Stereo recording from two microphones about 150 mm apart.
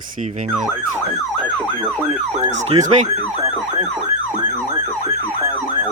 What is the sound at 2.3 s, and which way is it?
Emergency vehicle, 50° right (ahead or behind).